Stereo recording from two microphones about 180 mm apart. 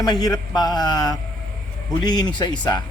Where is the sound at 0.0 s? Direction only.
20° left (ahead or behind).